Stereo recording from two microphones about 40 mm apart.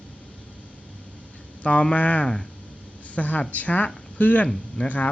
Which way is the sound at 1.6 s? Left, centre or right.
Left.